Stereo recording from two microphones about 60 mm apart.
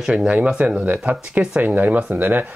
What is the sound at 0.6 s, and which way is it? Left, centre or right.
Speech, right.